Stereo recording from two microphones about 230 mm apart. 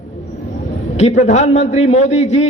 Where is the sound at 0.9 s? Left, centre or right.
Left.